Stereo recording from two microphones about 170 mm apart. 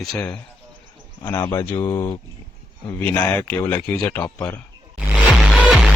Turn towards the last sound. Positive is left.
turn(degrees=-5)  # may be behind; listen again after turning